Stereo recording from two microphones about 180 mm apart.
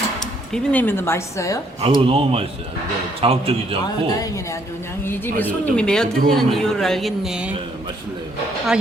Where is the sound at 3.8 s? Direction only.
20° left (ahead or behind); by 7.5 s 5° right (ahead or behind).